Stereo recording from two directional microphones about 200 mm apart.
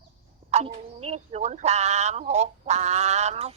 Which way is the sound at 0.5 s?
35° right (ahead or behind).